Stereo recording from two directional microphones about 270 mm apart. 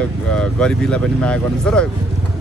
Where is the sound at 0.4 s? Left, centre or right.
Centre.